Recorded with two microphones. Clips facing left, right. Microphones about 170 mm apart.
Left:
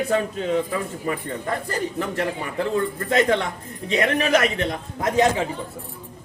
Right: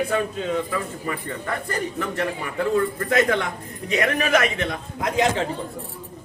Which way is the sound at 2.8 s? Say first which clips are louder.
Left 1 dB; 30° left (ahead or behind).